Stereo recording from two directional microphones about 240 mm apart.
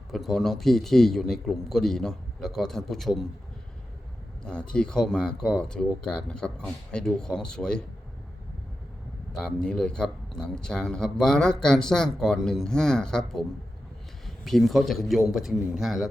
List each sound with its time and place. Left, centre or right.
0.1 s a man's voice: centre
4.4 s a man's voice: centre
9.3 s a man's voice: centre